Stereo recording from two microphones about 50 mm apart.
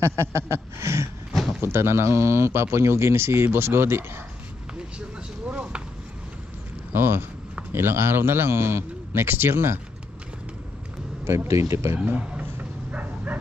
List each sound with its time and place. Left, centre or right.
0.0 s speech: right
5.5 s chop: right
6.9 s a man's voice: right
11.2 s speech: right
12.9 s dog: right